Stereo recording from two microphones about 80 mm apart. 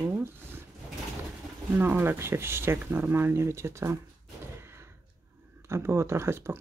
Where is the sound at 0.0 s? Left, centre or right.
Right.